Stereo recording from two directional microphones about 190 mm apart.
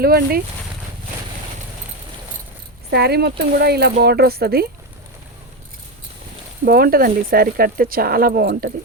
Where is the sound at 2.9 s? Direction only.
60° right (ahead or behind).